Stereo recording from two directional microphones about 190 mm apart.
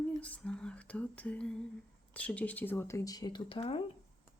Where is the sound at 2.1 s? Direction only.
5° left (ahead or behind); by 3.8 s 30° left (ahead or behind).